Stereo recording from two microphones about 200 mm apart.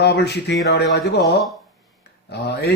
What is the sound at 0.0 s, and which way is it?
Speech, 55° left (ahead or behind).